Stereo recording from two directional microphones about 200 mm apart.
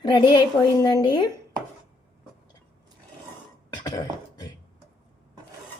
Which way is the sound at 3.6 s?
20° left (ahead or behind).